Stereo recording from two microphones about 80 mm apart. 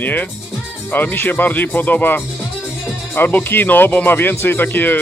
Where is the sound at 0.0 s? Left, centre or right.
Left.